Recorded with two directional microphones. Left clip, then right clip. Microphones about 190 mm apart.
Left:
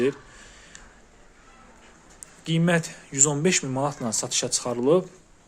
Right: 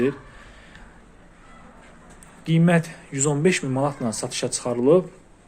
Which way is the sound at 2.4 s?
15° left (ahead or behind).